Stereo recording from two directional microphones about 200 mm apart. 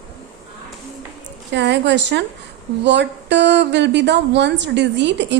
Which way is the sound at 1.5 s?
60° right (ahead or behind).